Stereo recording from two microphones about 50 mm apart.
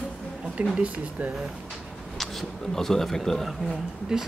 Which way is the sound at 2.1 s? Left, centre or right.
Centre.